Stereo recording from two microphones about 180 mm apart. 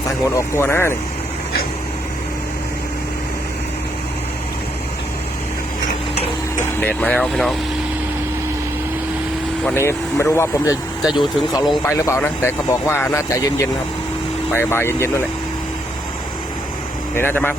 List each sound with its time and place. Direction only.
0.3 s speech: 15° left (ahead or behind)
6.7 s speech: 10° left (ahead or behind)
9.6 s speech: 15° left (ahead or behind)
11.1 s speech: 25° left (ahead or behind)
11.9 s speech: 15° left (ahead or behind)
17.2 s speech: 10° left (ahead or behind)